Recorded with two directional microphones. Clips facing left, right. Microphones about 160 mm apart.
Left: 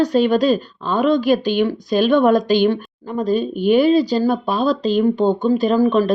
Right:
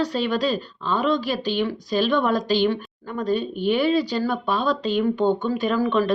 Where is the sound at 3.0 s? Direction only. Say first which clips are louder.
Left 5 dB; 30° left (ahead or behind).